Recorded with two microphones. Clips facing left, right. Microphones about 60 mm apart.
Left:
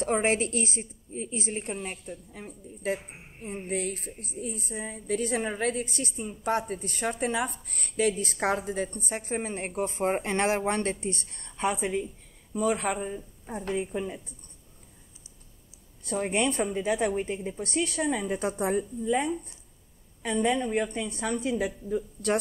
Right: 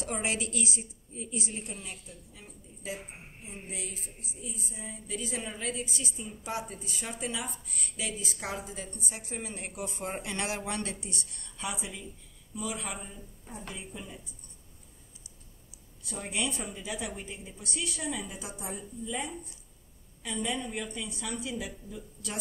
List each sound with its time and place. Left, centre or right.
0.0 s a woman's voice: left
16.0 s a woman's voice: left